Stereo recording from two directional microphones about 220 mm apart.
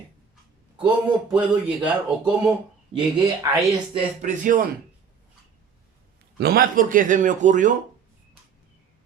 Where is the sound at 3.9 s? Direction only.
30° right (ahead or behind).